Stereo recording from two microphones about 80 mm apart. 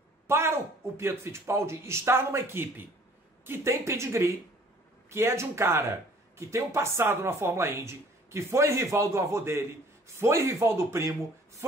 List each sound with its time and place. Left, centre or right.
0.3 s speech: right